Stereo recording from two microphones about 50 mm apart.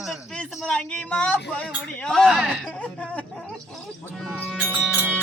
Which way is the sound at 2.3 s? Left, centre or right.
Centre.